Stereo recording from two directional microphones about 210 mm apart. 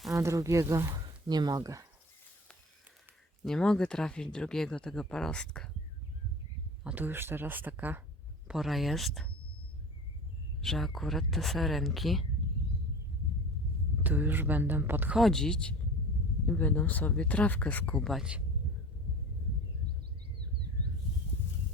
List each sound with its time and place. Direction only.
0.1 s speech: 15° right (ahead or behind)
3.4 s speech: 5° left (ahead or behind)
6.8 s speech: 10° right (ahead or behind)
10.6 s speech: centre (ahead or behind)
14.0 s speech: 10° right (ahead or behind)